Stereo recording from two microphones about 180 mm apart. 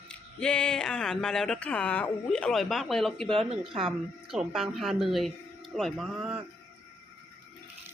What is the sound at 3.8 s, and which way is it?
Speech, centre (ahead or behind).